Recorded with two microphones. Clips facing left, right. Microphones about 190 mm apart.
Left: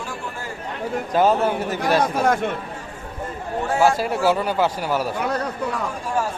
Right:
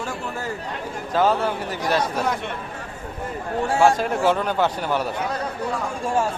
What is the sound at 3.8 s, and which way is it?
Speech, 5° left (ahead or behind).